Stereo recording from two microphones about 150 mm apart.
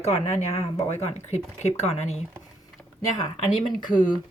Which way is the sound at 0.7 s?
20° left (ahead or behind).